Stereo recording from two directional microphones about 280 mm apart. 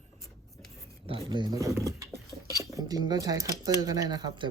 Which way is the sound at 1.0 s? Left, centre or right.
Centre.